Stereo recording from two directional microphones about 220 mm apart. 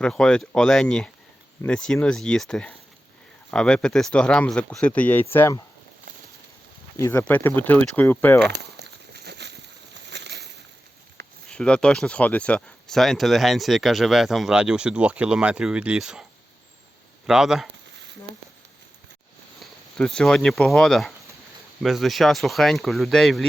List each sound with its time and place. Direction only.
0.0 s speech: 5° left (ahead or behind)
7.0 s speech: 10° left (ahead or behind)
8.4 s a sound: 50° right (ahead or behind)
11.4 s speech: 5° left (ahead or behind)
17.2 s speech: centre (ahead or behind)
20.0 s speech: 5° left (ahead or behind)